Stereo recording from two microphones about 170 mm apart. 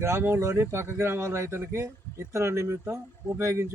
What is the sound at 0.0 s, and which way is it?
Speech, 15° right (ahead or behind).